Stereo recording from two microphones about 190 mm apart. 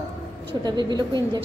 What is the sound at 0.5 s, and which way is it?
Speech, 20° right (ahead or behind).